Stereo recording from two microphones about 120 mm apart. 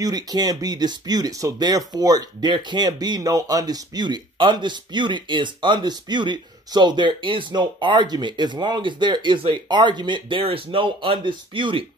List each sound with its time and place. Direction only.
0.0 s speech: 35° right (ahead or behind)